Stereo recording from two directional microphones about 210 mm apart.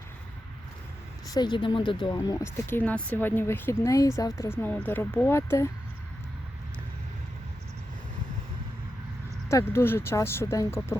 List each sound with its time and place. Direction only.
1.3 s speech: 20° left (ahead or behind)
9.5 s speech: 15° left (ahead or behind)